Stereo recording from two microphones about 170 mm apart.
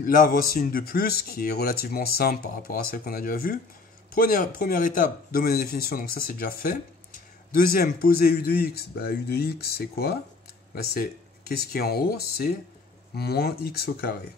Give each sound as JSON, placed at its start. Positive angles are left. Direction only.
{"t": 0.0, "sound": "speech", "side_deg": 55}